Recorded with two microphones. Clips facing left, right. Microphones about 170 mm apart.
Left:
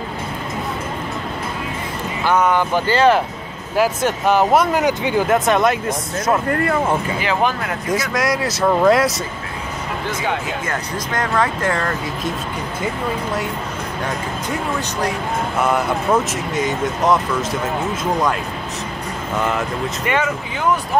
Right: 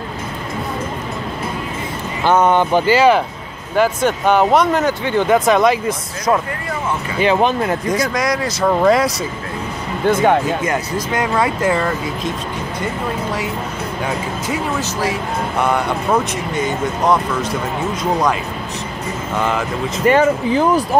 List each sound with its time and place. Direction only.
2.2 s speech: 25° right (ahead or behind)
3.0 s speech: centre (ahead or behind)
7.2 s speech: 25° right (ahead or behind)
7.9 s speech: centre (ahead or behind)
10.0 s speech: 55° right (ahead or behind)
10.6 s speech: 15° right (ahead or behind)
14.8 s speech: 5° right (ahead or behind)
16.5 s speech: centre (ahead or behind)
19.3 s speech: centre (ahead or behind)
20.1 s speech: 35° right (ahead or behind)